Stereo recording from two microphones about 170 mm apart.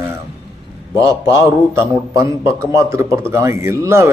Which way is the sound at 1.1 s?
15° right (ahead or behind).